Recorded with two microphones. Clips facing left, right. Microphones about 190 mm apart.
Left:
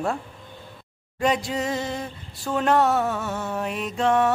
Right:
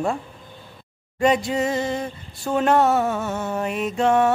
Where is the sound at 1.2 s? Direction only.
Centre (ahead or behind).